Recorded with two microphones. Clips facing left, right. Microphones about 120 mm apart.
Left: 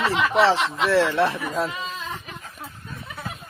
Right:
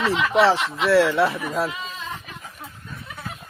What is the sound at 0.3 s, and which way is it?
Speech, 10° right (ahead or behind).